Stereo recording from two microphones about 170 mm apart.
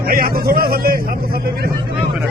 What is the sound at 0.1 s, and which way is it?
Speech, 60° right (ahead or behind).